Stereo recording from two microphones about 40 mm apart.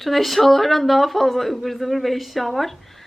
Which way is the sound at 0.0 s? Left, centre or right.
Centre.